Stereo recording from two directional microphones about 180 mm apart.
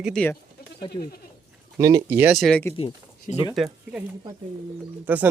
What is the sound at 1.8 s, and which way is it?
Speech, 20° right (ahead or behind).